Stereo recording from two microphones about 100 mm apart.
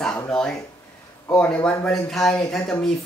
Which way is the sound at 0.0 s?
5° left (ahead or behind).